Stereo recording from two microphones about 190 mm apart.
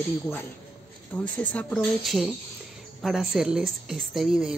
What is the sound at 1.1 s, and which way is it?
A woman's voice, 10° left (ahead or behind).